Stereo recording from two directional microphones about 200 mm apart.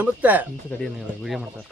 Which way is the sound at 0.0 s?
10° right (ahead or behind).